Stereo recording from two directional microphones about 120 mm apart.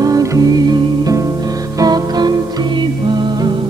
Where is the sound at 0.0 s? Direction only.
30° right (ahead or behind).